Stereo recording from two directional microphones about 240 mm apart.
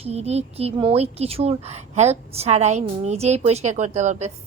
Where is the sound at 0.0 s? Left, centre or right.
Right.